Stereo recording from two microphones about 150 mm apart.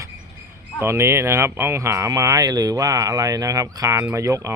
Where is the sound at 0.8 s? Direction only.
15° right (ahead or behind).